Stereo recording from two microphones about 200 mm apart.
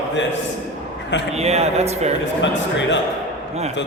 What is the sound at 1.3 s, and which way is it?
Speech, 30° right (ahead or behind).